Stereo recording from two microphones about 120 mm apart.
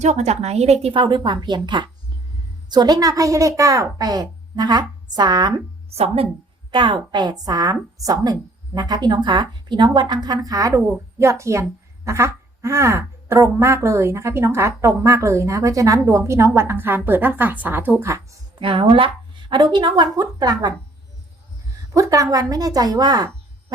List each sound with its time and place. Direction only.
0.0 s a woman's voice: 70° right (ahead or behind)
0.9 s a woman's voice: 40° right (ahead or behind)
5.9 s a woman's voice: 60° right (ahead or behind)
6.7 s a woman's voice: 40° right (ahead or behind); by 18.3 s 25° right (ahead or behind)
18.6 s a woman's voice: 45° right (ahead or behind)
21.9 s a woman's voice: 25° right (ahead or behind)